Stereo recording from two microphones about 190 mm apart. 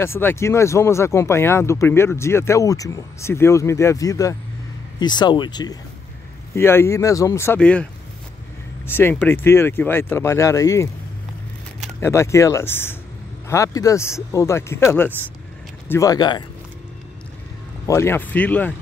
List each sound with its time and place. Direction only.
0.0 s speech: 10° left (ahead or behind)
12.0 s speech: 15° left (ahead or behind)
17.8 s speech: 15° left (ahead or behind)